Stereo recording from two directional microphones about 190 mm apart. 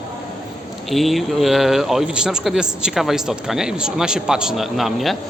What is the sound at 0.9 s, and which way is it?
Speech, centre (ahead or behind).